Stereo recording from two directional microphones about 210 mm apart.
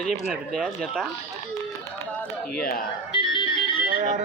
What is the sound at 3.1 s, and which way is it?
Music, 25° left (ahead or behind).